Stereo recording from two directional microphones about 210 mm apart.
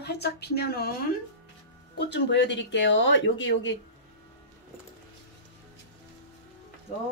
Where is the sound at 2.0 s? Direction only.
55° left (ahead or behind).